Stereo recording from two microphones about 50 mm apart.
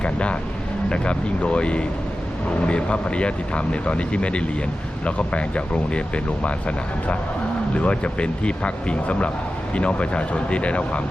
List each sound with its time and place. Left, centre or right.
0.0 s vehicle: left
0.9 s speech: left